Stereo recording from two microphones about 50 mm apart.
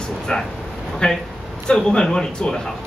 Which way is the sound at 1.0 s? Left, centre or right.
Centre.